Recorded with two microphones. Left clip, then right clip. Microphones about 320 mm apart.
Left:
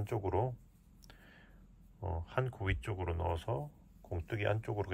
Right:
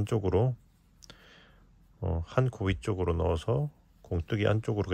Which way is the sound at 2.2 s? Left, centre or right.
Centre.